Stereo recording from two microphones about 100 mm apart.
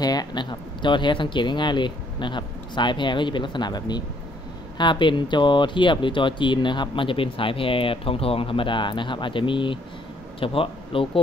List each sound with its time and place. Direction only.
0.0 s speech: 40° left (ahead or behind); by 11.1 s 65° left (ahead or behind)